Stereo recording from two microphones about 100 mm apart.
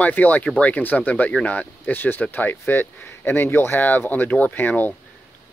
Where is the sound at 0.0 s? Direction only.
15° left (ahead or behind).